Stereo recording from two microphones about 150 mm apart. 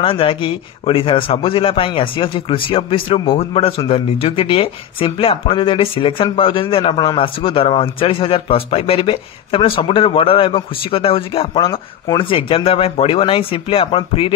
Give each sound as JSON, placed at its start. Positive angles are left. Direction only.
{"t": 0.0, "sound": "speech", "side_deg": 35}